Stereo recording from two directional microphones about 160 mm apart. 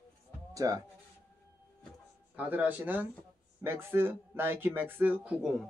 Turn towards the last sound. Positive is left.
turn(degrees=-5)  # may be behind; listen again after turning